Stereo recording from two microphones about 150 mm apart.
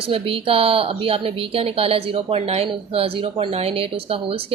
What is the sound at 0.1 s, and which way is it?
A woman's voice, 40° right (ahead or behind).